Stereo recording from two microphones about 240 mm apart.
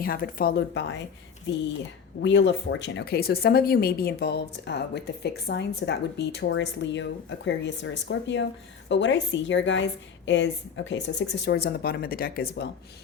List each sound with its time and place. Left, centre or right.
0.0 s speech: left